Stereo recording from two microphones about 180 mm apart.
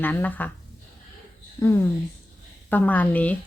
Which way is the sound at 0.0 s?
10° left (ahead or behind).